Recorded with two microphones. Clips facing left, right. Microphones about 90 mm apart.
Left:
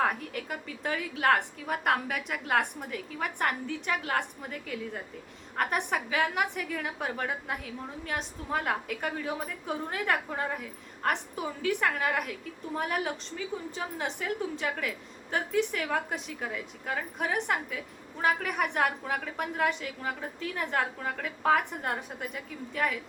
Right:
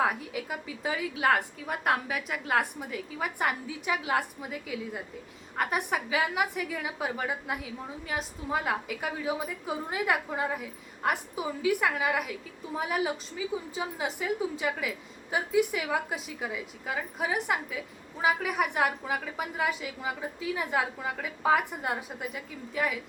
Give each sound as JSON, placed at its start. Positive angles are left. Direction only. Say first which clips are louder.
{"t": 0.0, "sound": "a woman's voice", "louder": "right 1 dB", "side_deg": -5}